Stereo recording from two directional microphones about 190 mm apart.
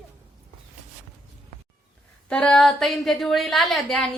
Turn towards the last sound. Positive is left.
turn(degrees=0)  # may be behind; listen again after turning